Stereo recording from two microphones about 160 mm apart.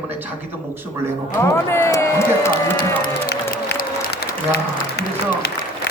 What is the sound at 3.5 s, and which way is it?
Applause, 60° left (ahead or behind).